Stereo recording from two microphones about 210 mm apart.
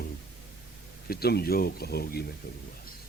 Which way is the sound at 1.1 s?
50° left (ahead or behind).